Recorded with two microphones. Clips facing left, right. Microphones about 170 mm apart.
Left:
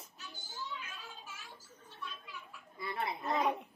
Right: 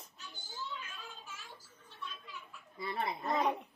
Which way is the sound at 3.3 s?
Centre (ahead or behind).